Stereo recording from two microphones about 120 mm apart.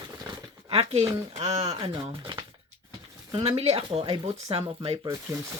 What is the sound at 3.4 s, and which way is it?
Speech, 55° right (ahead or behind).